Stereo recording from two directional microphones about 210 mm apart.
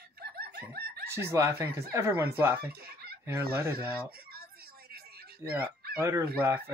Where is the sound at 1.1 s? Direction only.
10° right (ahead or behind).